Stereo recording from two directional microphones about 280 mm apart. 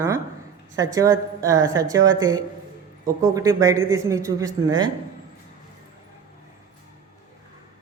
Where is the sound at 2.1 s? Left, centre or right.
Right.